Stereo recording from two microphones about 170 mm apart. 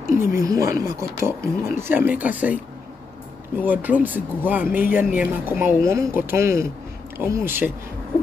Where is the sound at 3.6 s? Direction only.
10° right (ahead or behind).